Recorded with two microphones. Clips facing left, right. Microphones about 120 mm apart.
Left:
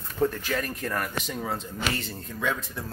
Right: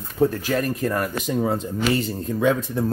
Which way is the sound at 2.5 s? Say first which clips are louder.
Right 10 dB; 50° right (ahead or behind).